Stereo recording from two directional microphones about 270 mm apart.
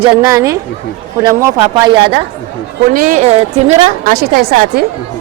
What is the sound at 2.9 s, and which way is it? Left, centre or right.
A woman's voice, right.